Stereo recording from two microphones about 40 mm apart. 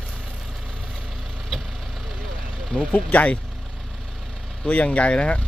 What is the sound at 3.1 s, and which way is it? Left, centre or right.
Speech, left.